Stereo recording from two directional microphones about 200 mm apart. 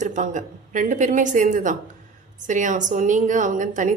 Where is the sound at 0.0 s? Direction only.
40° right (ahead or behind).